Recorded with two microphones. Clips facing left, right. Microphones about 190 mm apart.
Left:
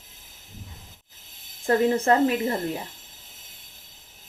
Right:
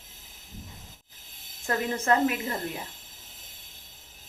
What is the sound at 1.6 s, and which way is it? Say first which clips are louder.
Speech: left 8 dB; 30° left (ahead or behind).